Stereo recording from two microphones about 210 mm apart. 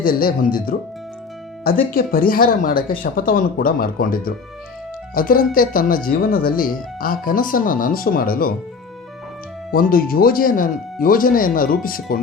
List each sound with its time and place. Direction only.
0.0 s speech: 40° left (ahead or behind)
9.7 s speech: 45° left (ahead or behind)